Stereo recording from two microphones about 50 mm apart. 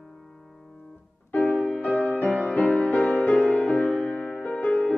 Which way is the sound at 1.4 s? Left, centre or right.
Left.